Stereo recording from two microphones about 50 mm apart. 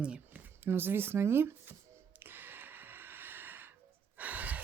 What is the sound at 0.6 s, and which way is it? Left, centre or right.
Speech, right.